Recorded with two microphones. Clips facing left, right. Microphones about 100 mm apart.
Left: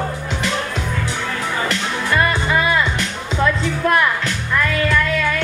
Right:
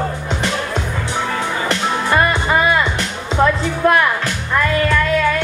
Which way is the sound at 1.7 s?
30° right (ahead or behind).